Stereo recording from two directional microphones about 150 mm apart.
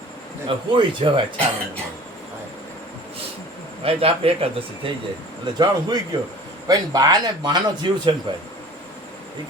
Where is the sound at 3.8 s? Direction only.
40° right (ahead or behind).